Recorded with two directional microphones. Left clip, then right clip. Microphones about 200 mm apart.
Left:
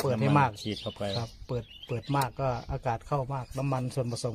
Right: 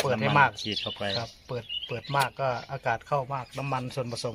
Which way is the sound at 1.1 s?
45° left (ahead or behind).